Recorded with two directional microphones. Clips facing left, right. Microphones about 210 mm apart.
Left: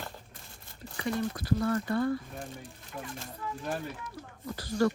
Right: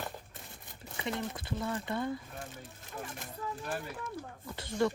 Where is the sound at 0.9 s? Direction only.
20° right (ahead or behind).